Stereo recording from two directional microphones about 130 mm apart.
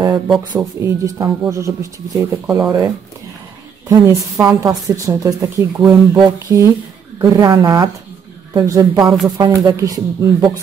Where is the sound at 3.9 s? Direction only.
25° right (ahead or behind).